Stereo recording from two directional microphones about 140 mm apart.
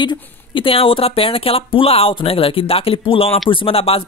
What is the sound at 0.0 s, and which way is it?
Speech, 35° left (ahead or behind).